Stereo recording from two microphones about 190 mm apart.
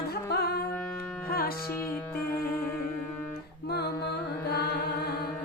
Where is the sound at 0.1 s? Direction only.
55° left (ahead or behind).